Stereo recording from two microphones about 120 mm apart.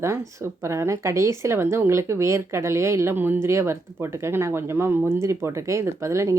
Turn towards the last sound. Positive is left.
turn(degrees=-25)  # may be behind; listen again after turning